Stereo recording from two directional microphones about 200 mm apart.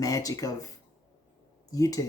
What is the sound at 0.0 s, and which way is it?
Speech, 15° left (ahead or behind).